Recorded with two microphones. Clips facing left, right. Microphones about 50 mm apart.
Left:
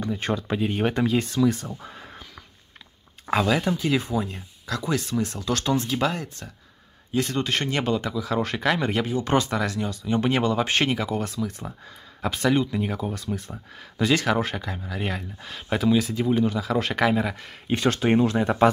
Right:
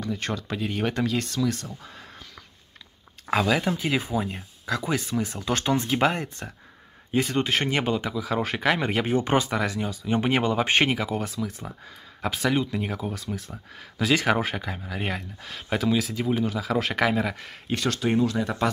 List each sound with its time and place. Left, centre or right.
0.0 s speech: centre
3.3 s speech: centre; by 7.3 s right
7.6 s speech: centre
11.0 s speech: centre
17.7 s speech: left